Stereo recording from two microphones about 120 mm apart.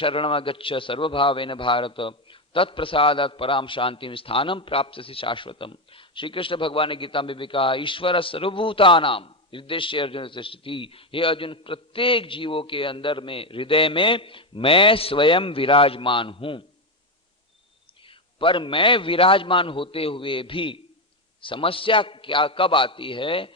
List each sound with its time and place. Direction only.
0.0 s a man's voice: 50° left (ahead or behind)
18.0 s a man's voice: 45° left (ahead or behind)